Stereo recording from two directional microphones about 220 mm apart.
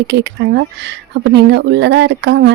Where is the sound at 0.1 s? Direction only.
50° right (ahead or behind).